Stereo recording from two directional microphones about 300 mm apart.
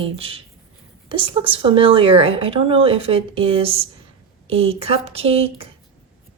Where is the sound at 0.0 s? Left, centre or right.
Centre.